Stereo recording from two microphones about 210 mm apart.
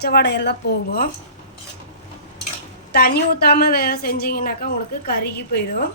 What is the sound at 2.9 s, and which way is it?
A woman's voice, 50° left (ahead or behind).